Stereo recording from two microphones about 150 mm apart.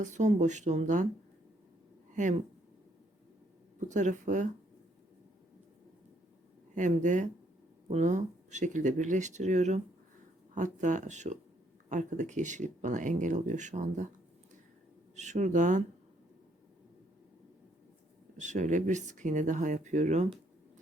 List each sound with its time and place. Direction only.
0.0 s speech: 55° right (ahead or behind)
2.1 s speech: 55° right (ahead or behind)
3.8 s speech: 55° right (ahead or behind)
6.7 s speech: 55° right (ahead or behind)
15.1 s speech: 50° right (ahead or behind)
18.3 s speech: 55° right (ahead or behind)